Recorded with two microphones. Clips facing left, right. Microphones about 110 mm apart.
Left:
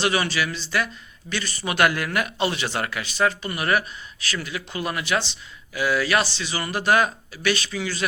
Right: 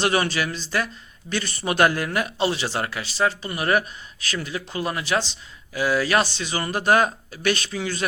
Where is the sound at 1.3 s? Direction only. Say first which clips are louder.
Right 3 dB; 50° right (ahead or behind).